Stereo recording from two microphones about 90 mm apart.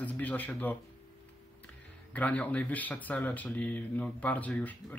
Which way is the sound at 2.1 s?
15° left (ahead or behind).